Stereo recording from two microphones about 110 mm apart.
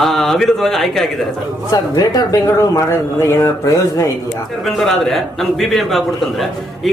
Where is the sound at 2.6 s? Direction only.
30° left (ahead or behind).